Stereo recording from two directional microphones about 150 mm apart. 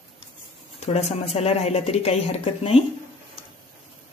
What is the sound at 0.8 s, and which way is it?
A woman's voice, 45° left (ahead or behind).